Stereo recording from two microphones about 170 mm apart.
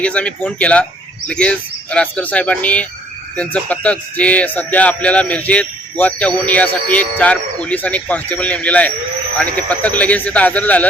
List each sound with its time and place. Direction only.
0.0 s speech: 5° left (ahead or behind)